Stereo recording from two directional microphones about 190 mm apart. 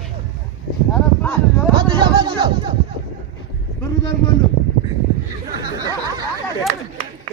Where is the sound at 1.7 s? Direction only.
25° right (ahead or behind).